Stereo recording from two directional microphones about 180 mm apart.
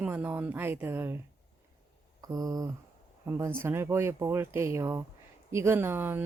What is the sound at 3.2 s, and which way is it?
Speech, 15° right (ahead or behind).